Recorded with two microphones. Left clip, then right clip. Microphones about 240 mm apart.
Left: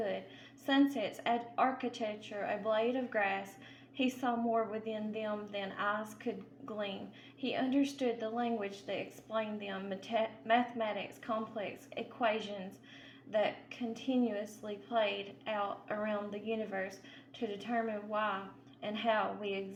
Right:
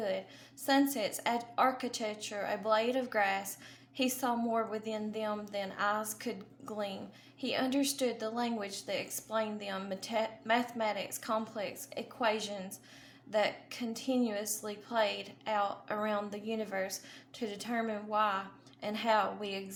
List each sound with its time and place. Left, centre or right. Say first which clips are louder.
0.6 s a woman's voice: right 2 dB; right
7.5 s a woman's voice: right 2 dB; right